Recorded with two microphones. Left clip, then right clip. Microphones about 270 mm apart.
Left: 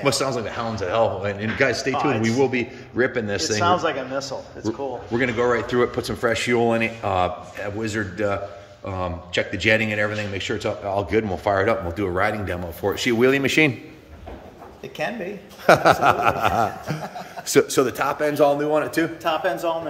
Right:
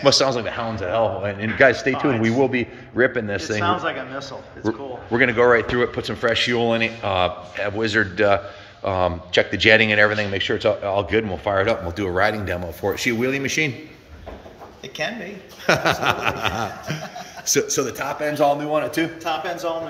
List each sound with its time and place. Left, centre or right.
0.0 s speech: centre
3.5 s a man's voice: left
5.1 s speech: centre
13.2 s a man's voice: centre
15.0 s a man's voice: centre
15.6 s a man's voice: centre